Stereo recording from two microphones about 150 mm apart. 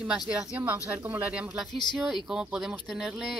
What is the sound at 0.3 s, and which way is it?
Speech, 10° right (ahead or behind).